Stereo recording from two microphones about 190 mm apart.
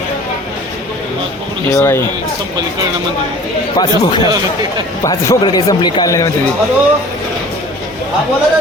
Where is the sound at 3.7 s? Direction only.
20° left (ahead or behind).